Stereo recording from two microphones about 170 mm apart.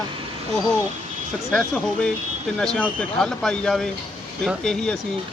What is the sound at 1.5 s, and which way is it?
Speech, 5° left (ahead or behind).